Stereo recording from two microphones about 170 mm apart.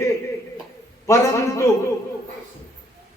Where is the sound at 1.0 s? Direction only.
15° left (ahead or behind).